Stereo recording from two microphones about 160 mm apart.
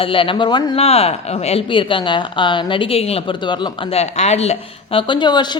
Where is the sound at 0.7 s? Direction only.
40° left (ahead or behind).